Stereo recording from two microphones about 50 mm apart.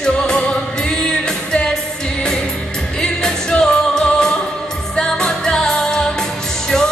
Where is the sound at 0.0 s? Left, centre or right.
Centre.